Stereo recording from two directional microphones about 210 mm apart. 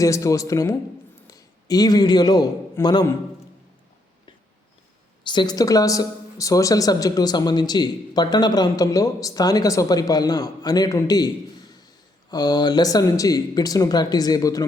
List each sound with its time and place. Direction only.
0.0 s a man's voice: 15° left (ahead or behind)
5.2 s speech: 20° left (ahead or behind)
12.3 s speech: 20° left (ahead or behind)